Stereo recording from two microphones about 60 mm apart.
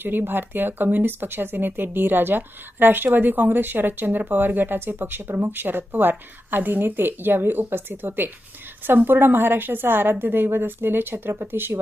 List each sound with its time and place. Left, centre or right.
0.0 s speech: right